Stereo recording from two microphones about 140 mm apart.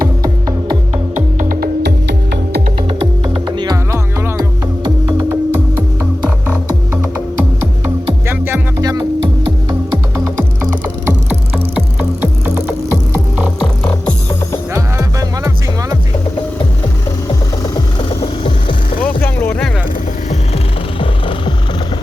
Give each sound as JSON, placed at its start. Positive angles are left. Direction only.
{"t": 0.2, "sound": "music", "side_deg": -30}
{"t": 1.1, "sound": "music", "side_deg": -70}
{"t": 3.3, "sound": "music", "side_deg": -35}
{"t": 3.9, "sound": "music", "side_deg": -20}
{"t": 6.2, "sound": "music", "side_deg": -10}
{"t": 8.3, "sound": "music", "side_deg": -15}
{"t": 10.2, "sound": "music", "side_deg": -20}
{"t": 11.5, "sound": "music", "side_deg": -5}
{"t": 14.7, "sound": "music", "side_deg": -20}
{"t": 19.0, "sound": "music", "side_deg": 15}
{"t": 21.0, "sound": "music", "side_deg": 35}